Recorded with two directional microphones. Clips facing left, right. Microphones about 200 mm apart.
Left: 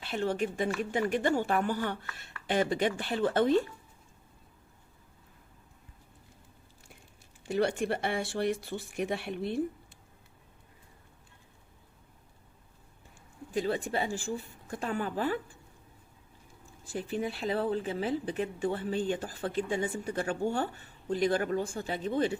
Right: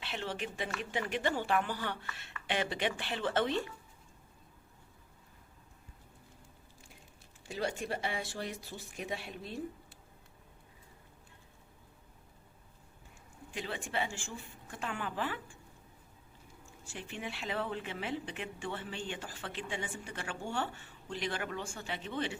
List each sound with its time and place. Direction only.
0.0 s speech: 45° left (ahead or behind)
7.4 s speech: 65° left (ahead or behind)
13.5 s speech: 35° left (ahead or behind)
16.8 s speech: 35° left (ahead or behind)